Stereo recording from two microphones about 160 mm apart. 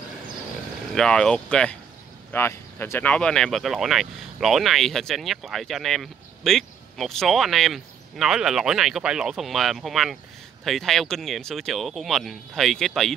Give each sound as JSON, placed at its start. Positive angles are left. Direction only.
{"t": 0.9, "sound": "speech", "side_deg": 5}